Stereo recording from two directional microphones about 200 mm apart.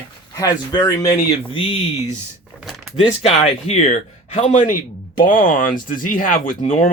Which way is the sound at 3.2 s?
35° left (ahead or behind).